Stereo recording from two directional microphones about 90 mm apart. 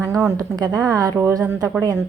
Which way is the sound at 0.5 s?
45° right (ahead or behind).